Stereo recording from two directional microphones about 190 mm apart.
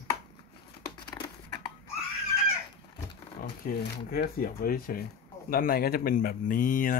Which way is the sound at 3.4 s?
50° left (ahead or behind).